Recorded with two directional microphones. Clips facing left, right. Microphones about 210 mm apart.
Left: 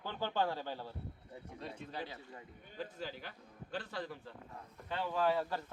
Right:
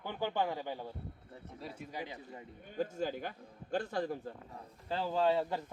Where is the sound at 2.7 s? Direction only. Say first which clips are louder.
Right 8 dB; 45° right (ahead or behind).